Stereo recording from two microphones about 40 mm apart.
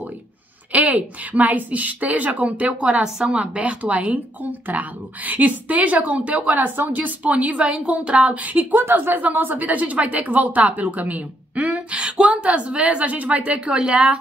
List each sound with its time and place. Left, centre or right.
0.7 s a woman's voice: right
8.4 s speech: right
8.8 s a woman's voice: right
13.7 s a woman's voice: right